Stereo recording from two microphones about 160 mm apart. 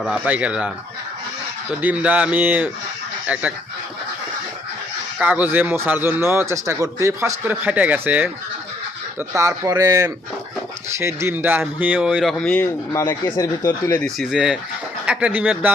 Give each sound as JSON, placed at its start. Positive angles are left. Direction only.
{"t": 0.0, "sound": "speech", "side_deg": -5}
{"t": 1.8, "sound": "speech", "side_deg": -10}
{"t": 5.2, "sound": "speech", "side_deg": -10}
{"t": 9.3, "sound": "speech", "side_deg": -20}
{"t": 14.0, "sound": "speech", "side_deg": 0}